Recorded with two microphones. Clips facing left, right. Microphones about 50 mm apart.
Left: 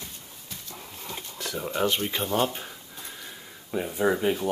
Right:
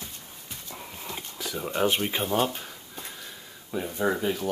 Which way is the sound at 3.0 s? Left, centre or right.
Centre.